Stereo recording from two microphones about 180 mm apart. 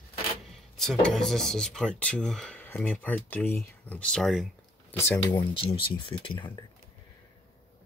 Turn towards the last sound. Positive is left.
turn(degrees=25)  # may be behind; listen again after turning